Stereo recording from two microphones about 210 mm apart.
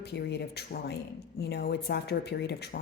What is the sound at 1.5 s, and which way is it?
Speech, 50° left (ahead or behind).